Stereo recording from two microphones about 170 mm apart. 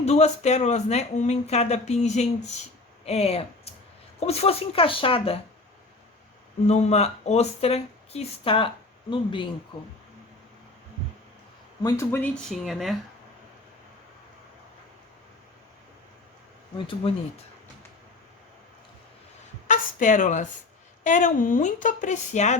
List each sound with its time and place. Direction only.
0.0 s speech: 40° left (ahead or behind)
6.7 s speech: 40° left (ahead or behind)
11.8 s speech: 20° left (ahead or behind)
12.5 s speech: centre (ahead or behind)
16.7 s speech: 30° left (ahead or behind)
19.6 s speech: 45° left (ahead or behind)